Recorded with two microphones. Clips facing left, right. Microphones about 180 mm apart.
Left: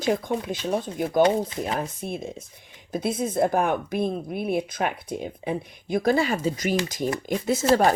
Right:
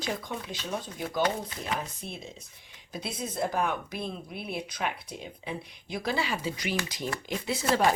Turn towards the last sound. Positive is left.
turn(degrees=45)  # may be behind; listen again after turning